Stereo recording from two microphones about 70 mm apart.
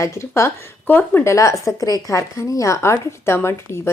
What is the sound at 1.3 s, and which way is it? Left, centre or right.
Speech, left.